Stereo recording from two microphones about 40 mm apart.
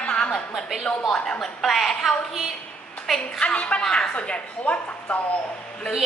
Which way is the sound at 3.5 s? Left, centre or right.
Left.